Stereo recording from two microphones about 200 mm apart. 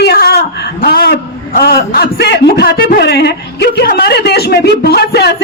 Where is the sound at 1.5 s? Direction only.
50° left (ahead or behind).